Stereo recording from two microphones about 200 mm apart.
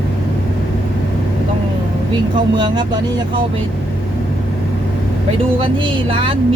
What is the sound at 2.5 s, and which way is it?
Speech, 20° right (ahead or behind).